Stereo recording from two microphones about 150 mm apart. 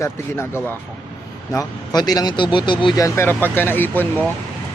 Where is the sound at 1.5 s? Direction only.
25° left (ahead or behind).